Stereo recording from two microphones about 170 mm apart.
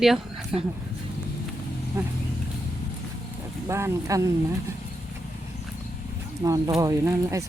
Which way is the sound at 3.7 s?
15° right (ahead or behind).